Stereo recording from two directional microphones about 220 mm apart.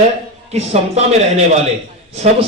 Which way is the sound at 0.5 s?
30° right (ahead or behind).